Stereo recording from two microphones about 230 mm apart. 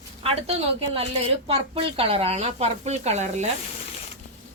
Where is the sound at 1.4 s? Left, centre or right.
Right.